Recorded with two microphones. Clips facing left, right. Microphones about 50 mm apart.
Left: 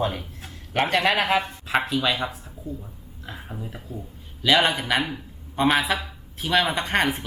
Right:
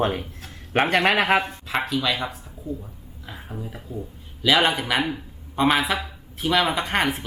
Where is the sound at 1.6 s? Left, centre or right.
Centre.